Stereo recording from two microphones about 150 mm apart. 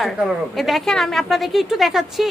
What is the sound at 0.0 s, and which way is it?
A woman's voice, centre (ahead or behind).